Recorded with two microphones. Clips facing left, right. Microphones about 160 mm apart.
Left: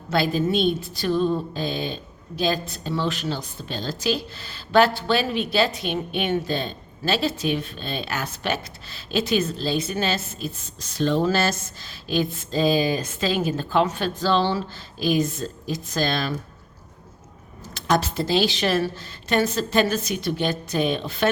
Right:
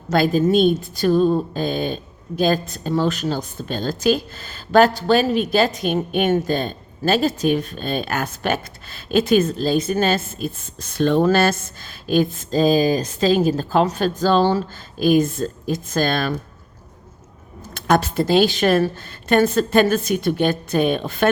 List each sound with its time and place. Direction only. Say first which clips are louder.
0.1 s a woman's voice: right 5 dB; 45° right (ahead or behind)
17.7 s a woman's voice: right 4 dB; 55° right (ahead or behind)